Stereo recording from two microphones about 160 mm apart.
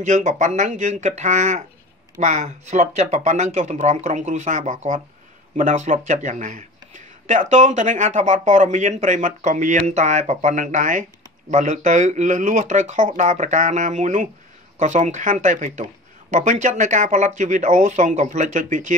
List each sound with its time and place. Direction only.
0.0 s speech: 50° right (ahead or behind)